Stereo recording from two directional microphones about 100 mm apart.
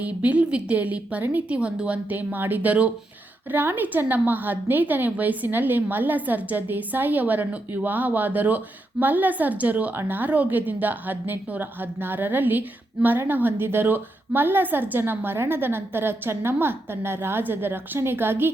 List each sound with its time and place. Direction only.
0.0 s a woman's voice: 15° right (ahead or behind)